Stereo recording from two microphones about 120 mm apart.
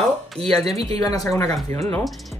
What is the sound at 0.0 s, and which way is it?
Speech, 5° left (ahead or behind).